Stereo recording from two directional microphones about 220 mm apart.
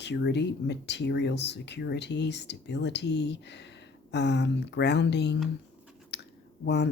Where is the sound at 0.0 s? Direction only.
50° left (ahead or behind).